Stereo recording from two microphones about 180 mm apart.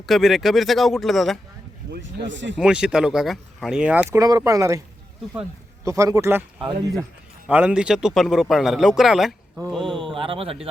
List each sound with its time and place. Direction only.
0.0 s a man's voice: centre (ahead or behind)
1.9 s speech: 90° right
2.6 s a man's voice: 5° right (ahead or behind)
4.1 s speech: 20° right (ahead or behind)
7.4 s a man's voice: 5° right (ahead or behind)
10.2 s speech: 30° right (ahead or behind)